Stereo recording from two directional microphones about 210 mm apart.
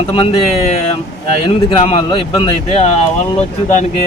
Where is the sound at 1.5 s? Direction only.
25° left (ahead or behind).